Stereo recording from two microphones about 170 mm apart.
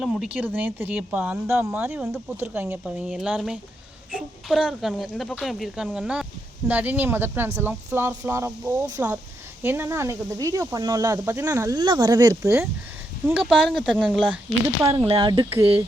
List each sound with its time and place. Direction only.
0.0 s speech: 5° right (ahead or behind)
13.2 s speech: 5° right (ahead or behind)
14.8 s speech: 30° right (ahead or behind)